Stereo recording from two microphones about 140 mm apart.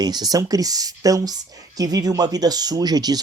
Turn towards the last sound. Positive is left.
turn(degrees=-30)  # may be behind; listen again after turning